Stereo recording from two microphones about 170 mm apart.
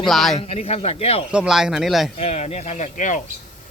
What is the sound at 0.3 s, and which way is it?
Speech, 40° left (ahead or behind).